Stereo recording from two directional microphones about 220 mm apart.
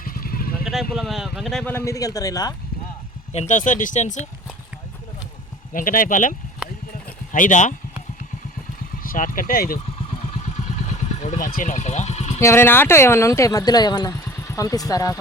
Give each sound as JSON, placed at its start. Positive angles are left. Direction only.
{"t": 0.0, "sound": "vehicle", "side_deg": 40}
{"t": 0.6, "sound": "speech", "side_deg": 0}
{"t": 3.3, "sound": "speech", "side_deg": 35}
{"t": 5.7, "sound": "speech", "side_deg": 40}
{"t": 7.3, "sound": "speech", "side_deg": 35}
{"t": 9.0, "sound": "speech", "side_deg": 35}
{"t": 10.1, "sound": "vehicle", "side_deg": 30}
{"t": 12.4, "sound": "speech", "side_deg": 10}